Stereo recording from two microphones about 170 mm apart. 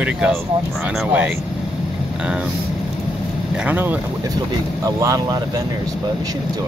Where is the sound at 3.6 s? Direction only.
10° right (ahead or behind).